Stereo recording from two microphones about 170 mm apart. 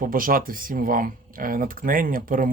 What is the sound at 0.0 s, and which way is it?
Speech, 55° right (ahead or behind).